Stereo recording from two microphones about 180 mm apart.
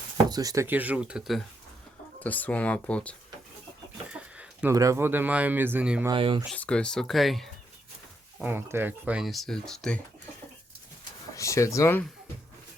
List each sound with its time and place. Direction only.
0.3 s speech: 20° right (ahead or behind); by 1.4 s 5° right (ahead or behind)
2.1 s speech: 10° left (ahead or behind)
4.1 s chicken: 5° right (ahead or behind)
4.7 s speech: 15° right (ahead or behind)
6.1 s speech: 30° right (ahead or behind)
6.5 s speech: 5° left (ahead or behind)
8.4 s speech: 10° right (ahead or behind); by 10.0 s 5° left (ahead or behind)
11.3 s speech: 15° left (ahead or behind)